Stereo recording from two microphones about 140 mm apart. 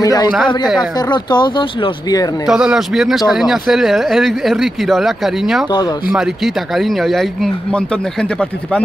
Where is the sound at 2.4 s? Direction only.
5° right (ahead or behind).